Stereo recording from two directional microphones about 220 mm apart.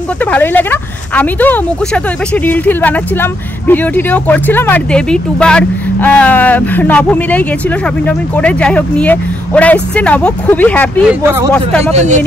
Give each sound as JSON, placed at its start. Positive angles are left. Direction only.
{"t": 0.2, "sound": "speech", "side_deg": 10}
{"t": 11.1, "sound": "speech", "side_deg": -10}
{"t": 11.9, "sound": "speech", "side_deg": -30}